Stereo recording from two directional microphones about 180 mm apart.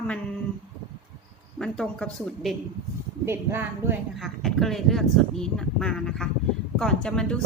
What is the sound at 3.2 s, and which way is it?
Speech, 15° right (ahead or behind).